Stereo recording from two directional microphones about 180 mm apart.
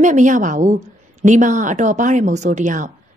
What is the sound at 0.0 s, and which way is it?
A woman's voice, 45° right (ahead or behind).